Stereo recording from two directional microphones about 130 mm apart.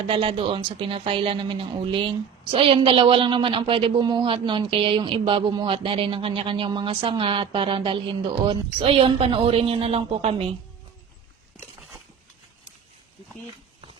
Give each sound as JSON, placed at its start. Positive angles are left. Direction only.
{"t": 0.1, "sound": "a woman's voice", "side_deg": -45}